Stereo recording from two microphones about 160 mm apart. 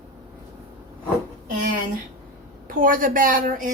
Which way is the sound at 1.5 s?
65° right (ahead or behind).